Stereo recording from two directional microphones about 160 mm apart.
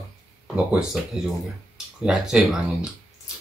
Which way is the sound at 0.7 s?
5° right (ahead or behind).